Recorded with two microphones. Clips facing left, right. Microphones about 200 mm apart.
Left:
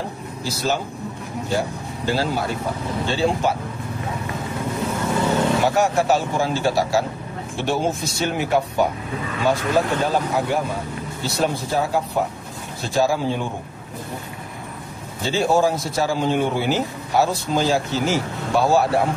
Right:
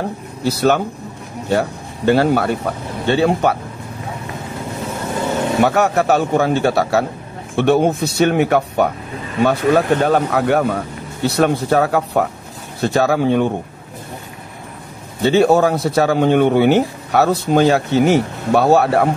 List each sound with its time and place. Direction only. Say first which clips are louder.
0.4 s a man's voice: right 8 dB; 60° right (ahead or behind)
5.6 s a man's voice: right 4 dB; 60° right (ahead or behind)
15.2 s a man's voice: right 6 dB; 65° right (ahead or behind)